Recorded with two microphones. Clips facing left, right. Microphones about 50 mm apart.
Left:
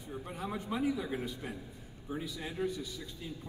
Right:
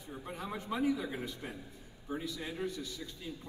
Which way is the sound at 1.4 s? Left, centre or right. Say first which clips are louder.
Left 2 dB; centre.